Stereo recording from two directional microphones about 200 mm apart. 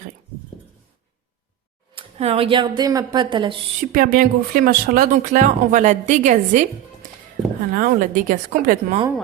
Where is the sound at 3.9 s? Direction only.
45° right (ahead or behind).